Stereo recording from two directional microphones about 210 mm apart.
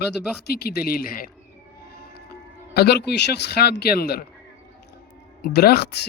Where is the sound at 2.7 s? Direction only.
50° left (ahead or behind).